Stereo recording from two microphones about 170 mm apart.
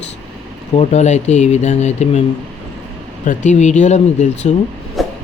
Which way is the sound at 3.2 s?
45° left (ahead or behind).